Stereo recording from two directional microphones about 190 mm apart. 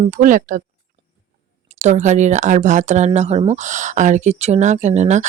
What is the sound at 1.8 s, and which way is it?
Speech, 35° right (ahead or behind).